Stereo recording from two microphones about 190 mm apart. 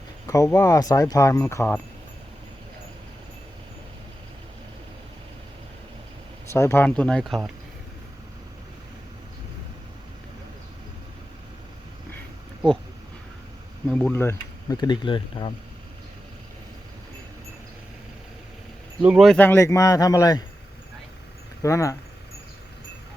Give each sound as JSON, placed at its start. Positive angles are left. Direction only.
{"t": 0.3, "sound": "speech", "side_deg": 15}
{"t": 6.5, "sound": "speech", "side_deg": 15}
{"t": 13.8, "sound": "speech", "side_deg": 5}
{"t": 19.0, "sound": "speech", "side_deg": 0}
{"t": 21.6, "sound": "speech", "side_deg": 15}